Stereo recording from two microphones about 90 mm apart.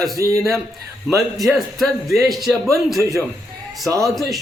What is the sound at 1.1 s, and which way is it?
A man's voice, centre (ahead or behind).